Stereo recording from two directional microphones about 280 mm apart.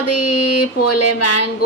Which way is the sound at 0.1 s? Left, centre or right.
Left.